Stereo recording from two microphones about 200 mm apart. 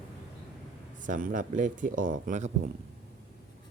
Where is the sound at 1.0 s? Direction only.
40° right (ahead or behind).